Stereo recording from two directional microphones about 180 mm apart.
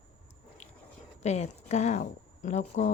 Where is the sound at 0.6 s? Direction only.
40° left (ahead or behind).